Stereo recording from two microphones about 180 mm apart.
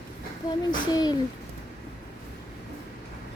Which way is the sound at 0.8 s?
20° left (ahead or behind).